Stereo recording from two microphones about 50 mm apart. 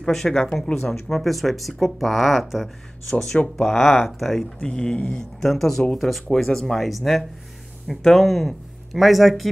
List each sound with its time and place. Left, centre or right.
0.0 s speech: centre
4.6 s speech: centre
5.4 s speech: centre